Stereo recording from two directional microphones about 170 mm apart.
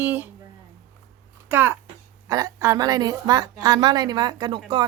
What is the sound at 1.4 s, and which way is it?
A woman's voice, 10° right (ahead or behind).